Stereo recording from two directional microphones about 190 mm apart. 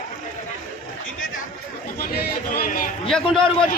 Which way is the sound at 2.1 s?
50° left (ahead or behind).